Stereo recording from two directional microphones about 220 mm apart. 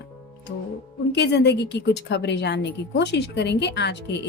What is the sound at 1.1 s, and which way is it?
A woman's voice, 50° left (ahead or behind).